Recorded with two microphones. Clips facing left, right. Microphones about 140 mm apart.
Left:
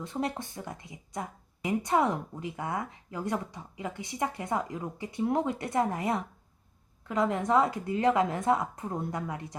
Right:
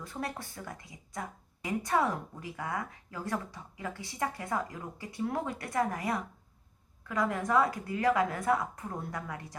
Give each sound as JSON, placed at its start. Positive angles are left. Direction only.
{"t": 0.0, "sound": "speech", "side_deg": 20}